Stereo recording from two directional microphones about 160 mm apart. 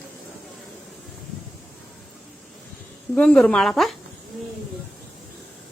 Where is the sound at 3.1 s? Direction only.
5° left (ahead or behind).